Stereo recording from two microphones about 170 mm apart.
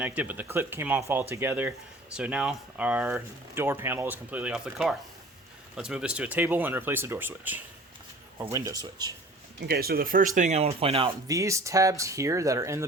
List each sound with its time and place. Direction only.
0.0 s speech: 10° right (ahead or behind)
9.6 s speech: 70° right (ahead or behind); by 11.1 s 35° right (ahead or behind)
11.3 s speech: 20° right (ahead or behind)